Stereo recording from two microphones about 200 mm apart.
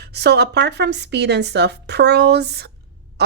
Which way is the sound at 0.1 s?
55° right (ahead or behind).